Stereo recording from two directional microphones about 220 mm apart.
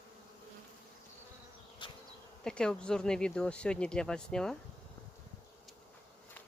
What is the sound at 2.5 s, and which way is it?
Speech, 5° left (ahead or behind).